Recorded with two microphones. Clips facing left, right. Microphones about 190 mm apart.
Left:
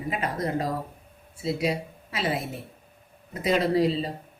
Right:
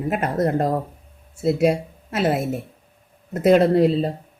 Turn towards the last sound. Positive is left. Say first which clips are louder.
# right 6 dB
turn(degrees=-55)  # may be behind; listen again after turning